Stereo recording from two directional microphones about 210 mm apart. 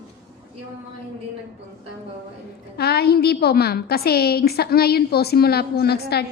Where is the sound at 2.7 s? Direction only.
50° left (ahead or behind).